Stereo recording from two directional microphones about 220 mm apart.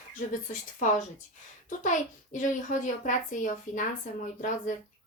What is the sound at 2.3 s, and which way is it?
A woman's voice, 35° left (ahead or behind).